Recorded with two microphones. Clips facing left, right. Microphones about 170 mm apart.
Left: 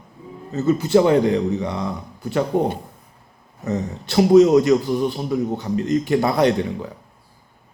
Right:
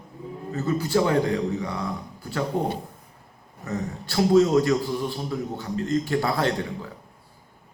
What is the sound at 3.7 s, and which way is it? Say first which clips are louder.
A man's voice: left 6 dB; 20° left (ahead or behind).